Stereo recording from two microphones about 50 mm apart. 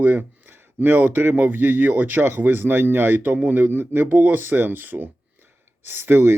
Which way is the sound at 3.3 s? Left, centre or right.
Right.